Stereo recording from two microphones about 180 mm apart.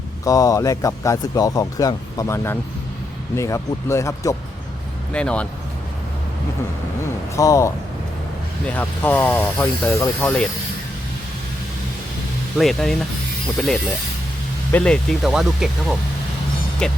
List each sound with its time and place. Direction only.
0.3 s speech: 20° left (ahead or behind)
5.1 s speech: 5° left (ahead or behind)
7.3 s speech: 15° left (ahead or behind)
12.5 s speech: centre (ahead or behind)